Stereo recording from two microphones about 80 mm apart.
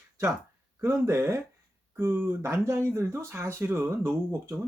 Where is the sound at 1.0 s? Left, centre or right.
Right.